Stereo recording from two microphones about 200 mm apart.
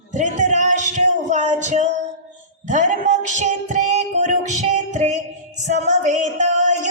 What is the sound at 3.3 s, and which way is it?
Music, 35° right (ahead or behind).